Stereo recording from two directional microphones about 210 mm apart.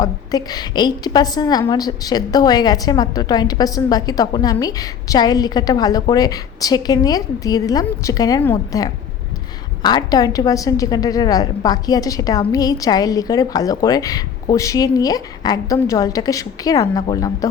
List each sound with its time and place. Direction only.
0.0 s a woman's voice: 20° left (ahead or behind)